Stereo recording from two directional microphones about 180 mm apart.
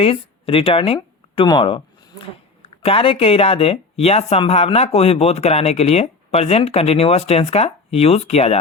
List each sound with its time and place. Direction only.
0.0 s speech: 30° left (ahead or behind)
0.9 s a sound: 25° left (ahead or behind)
2.6 s speech: 30° left (ahead or behind)